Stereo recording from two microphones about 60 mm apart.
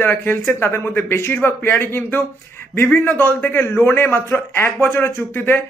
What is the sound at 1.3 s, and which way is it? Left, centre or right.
Speech, left.